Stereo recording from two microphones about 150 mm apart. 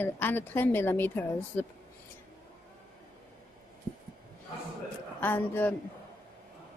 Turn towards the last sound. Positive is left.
turn(degrees=10)  # may be behind; listen again after turning